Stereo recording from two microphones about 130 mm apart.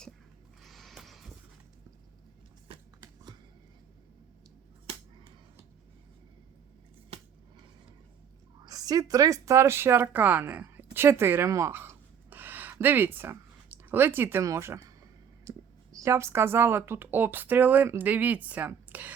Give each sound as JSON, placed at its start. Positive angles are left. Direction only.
{"t": 0.6, "sound": "music", "side_deg": 0}
{"t": 8.6, "sound": "a woman's voice", "side_deg": -30}